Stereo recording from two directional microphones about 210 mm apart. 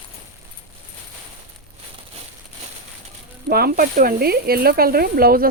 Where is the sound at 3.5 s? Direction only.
45° right (ahead or behind).